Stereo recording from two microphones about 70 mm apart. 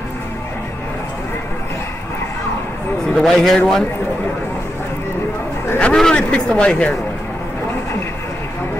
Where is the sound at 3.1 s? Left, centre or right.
Centre.